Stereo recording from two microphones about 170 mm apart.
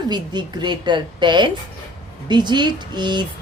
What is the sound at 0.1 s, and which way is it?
Speech, 25° right (ahead or behind).